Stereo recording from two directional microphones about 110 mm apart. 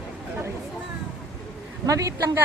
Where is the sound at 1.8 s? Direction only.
30° right (ahead or behind).